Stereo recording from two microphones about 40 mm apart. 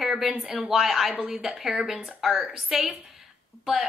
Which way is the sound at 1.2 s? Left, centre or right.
Right.